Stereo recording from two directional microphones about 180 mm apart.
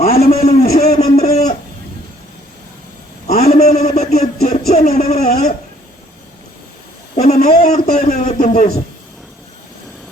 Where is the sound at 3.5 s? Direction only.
40° left (ahead or behind).